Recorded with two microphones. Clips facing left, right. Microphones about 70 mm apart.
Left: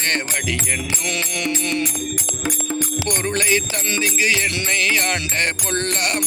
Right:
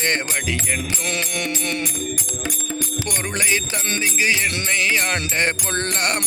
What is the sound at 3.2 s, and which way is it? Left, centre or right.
Music, centre.